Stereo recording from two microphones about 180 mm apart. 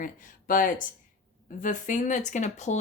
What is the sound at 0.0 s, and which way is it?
A woman's voice, 50° left (ahead or behind).